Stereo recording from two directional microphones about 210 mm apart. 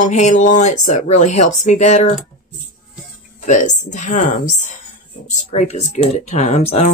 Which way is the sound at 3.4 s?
35° left (ahead or behind).